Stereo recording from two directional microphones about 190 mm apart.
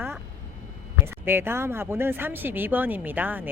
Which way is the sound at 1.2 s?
10° right (ahead or behind).